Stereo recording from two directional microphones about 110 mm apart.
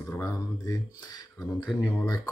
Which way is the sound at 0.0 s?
30° left (ahead or behind).